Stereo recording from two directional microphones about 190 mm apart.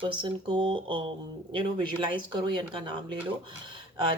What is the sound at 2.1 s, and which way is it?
Speech, 25° right (ahead or behind).